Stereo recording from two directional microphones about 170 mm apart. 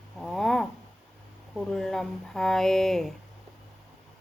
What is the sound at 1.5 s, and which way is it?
Speech, 5° left (ahead or behind).